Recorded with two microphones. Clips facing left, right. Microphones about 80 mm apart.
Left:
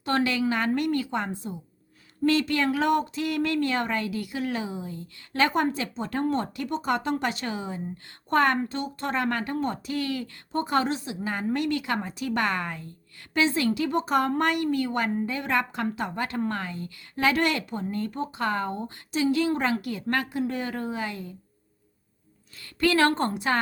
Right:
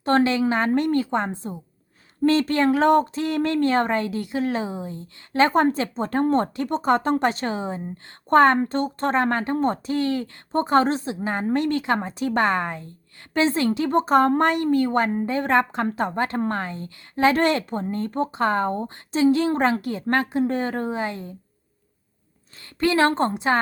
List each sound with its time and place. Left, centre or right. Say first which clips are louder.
0.0 s speech: right 5 dB; right
22.8 s a woman's voice: right 3 dB; right